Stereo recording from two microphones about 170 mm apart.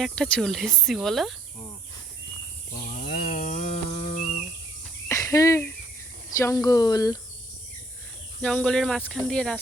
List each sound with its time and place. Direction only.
0.0 s speech: 5° left (ahead or behind)
2.9 s a sound: 65° left (ahead or behind); by 4.4 s 35° left (ahead or behind)
5.0 s cricket: 20° left (ahead or behind)
6.3 s speech: 20° left (ahead or behind)
8.4 s speech: 5° left (ahead or behind)